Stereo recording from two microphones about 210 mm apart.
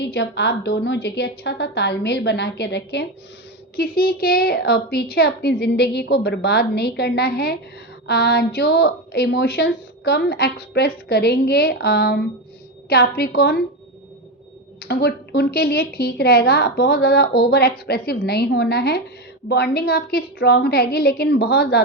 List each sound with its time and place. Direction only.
0.0 s a woman's voice: 50° left (ahead or behind)
14.8 s a woman's voice: 50° left (ahead or behind)